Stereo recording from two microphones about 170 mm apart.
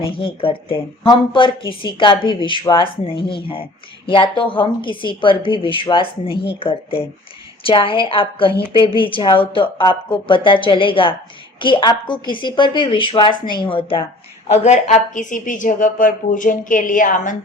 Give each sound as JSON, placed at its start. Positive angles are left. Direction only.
{"t": 0.0, "sound": "a woman's voice", "side_deg": 30}
{"t": 14.5, "sound": "a woman's voice", "side_deg": 40}